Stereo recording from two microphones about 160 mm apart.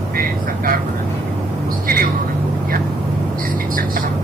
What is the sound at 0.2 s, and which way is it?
Quack, 65° right (ahead or behind).